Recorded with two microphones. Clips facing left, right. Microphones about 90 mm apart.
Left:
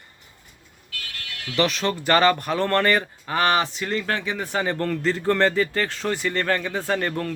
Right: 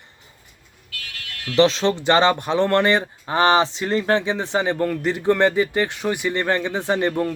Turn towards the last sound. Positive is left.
turn(degrees=-15)  # may be behind; listen again after turning